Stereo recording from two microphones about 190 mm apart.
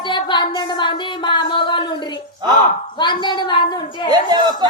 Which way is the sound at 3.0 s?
25° left (ahead or behind).